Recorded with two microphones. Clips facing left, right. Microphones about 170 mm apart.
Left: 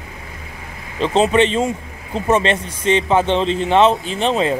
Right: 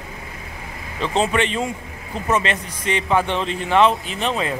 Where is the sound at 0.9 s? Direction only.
20° left (ahead or behind).